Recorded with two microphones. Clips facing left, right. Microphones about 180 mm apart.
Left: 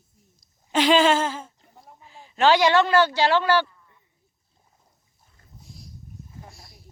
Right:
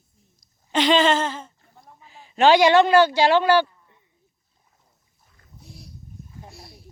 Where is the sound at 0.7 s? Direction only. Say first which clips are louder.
Even; 5° left (ahead or behind).